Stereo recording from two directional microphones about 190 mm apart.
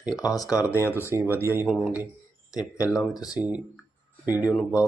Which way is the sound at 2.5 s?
20° left (ahead or behind).